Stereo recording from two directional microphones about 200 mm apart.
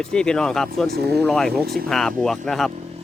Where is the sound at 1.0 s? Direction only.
55° right (ahead or behind).